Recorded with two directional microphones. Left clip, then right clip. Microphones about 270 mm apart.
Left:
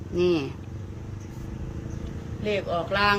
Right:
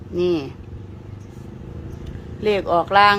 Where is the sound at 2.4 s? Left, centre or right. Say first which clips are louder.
Right 8 dB; centre.